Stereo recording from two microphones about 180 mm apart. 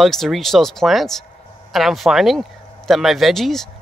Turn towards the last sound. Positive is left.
turn(degrees=0)  # may be behind; listen again after turning